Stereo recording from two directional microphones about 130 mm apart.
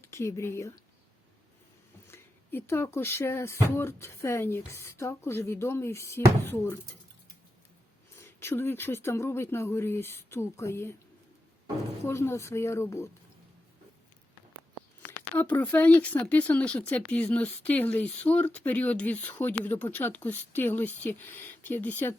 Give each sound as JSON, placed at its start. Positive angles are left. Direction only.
{"t": 0.0, "sound": "speech", "side_deg": 20}
{"t": 2.0, "sound": "speech", "side_deg": 15}
{"t": 8.1, "sound": "speech", "side_deg": 20}
{"t": 12.0, "sound": "speech", "side_deg": 20}
{"t": 15.4, "sound": "speech", "side_deg": 10}